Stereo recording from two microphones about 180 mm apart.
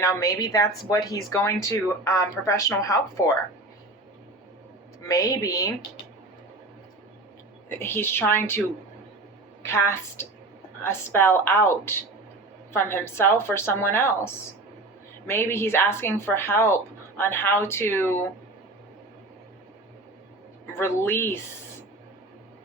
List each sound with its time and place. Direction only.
0.0 s a woman's voice: 20° left (ahead or behind)
5.0 s a woman's voice: 20° left (ahead or behind)
7.8 s speech: 10° left (ahead or behind)
9.6 s speech: 15° left (ahead or behind)
20.7 s speech: 10° left (ahead or behind)